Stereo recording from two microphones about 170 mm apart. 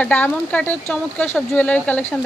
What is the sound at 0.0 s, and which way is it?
Speech, 10° left (ahead or behind).